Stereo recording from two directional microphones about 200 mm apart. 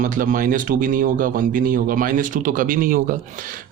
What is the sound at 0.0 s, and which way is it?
A man's voice, 40° right (ahead or behind).